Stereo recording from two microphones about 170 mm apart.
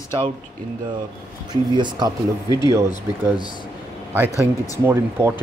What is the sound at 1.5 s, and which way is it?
Speech, 25° right (ahead or behind).